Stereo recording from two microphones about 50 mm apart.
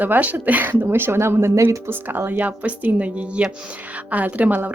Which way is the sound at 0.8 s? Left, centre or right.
Right.